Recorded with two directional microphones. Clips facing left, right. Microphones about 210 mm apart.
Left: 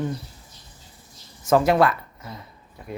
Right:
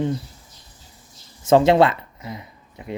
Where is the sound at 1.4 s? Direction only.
25° right (ahead or behind).